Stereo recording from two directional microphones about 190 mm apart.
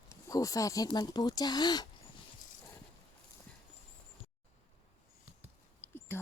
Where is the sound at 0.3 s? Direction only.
20° left (ahead or behind).